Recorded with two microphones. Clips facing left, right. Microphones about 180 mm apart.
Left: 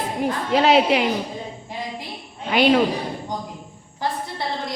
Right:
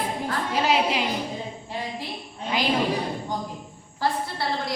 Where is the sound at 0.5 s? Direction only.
70° left (ahead or behind).